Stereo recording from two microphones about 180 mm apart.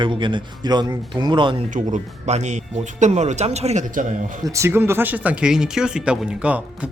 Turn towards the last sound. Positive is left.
turn(degrees=-5)  # may be behind; listen again after turning